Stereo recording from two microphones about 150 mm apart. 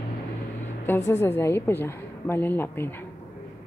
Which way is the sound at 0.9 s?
20° left (ahead or behind).